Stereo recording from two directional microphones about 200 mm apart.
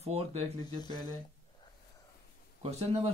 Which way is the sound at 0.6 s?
20° left (ahead or behind).